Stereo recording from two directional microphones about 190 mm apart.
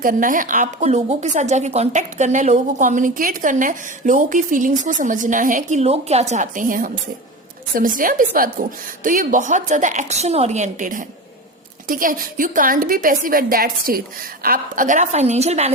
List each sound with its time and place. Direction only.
0.0 s a woman's voice: 45° right (ahead or behind)